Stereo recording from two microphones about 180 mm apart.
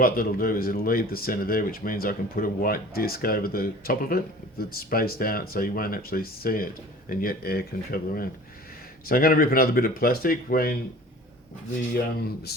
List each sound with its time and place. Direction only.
0.0 s speech: 55° left (ahead or behind)